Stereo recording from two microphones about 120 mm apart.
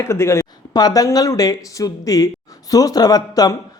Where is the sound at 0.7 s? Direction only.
35° left (ahead or behind).